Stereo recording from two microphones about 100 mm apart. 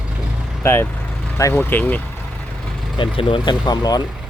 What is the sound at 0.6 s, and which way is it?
Speech, 25° left (ahead or behind).